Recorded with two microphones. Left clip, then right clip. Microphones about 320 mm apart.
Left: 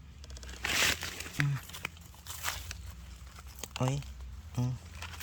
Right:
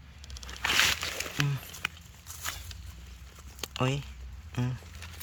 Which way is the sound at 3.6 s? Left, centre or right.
Centre.